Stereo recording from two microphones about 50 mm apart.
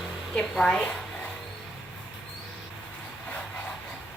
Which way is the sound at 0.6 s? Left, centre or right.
Centre.